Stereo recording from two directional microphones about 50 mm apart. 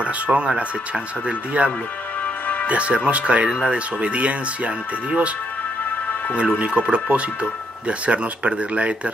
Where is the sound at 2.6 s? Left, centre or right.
Right.